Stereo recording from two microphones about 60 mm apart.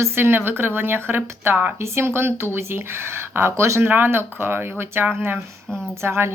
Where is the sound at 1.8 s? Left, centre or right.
Right.